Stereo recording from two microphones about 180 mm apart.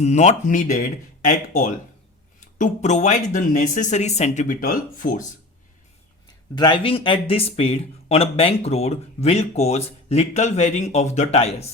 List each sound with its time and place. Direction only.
0.0 s speech: 40° left (ahead or behind)
6.6 s speech: 25° left (ahead or behind)